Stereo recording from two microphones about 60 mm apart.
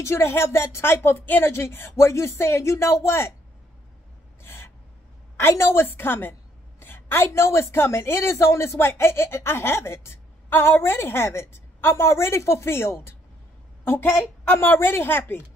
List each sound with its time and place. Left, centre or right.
0.0 s a woman's voice: left
4.4 s gasp: left
5.4 s a woman's voice: left